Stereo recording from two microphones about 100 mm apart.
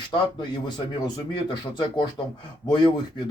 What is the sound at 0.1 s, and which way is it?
Speech, 50° left (ahead or behind).